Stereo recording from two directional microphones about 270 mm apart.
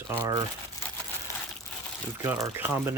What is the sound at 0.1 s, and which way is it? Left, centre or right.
Speech, centre.